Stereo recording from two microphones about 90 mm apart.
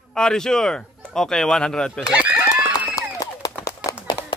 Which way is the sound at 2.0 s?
10° right (ahead or behind).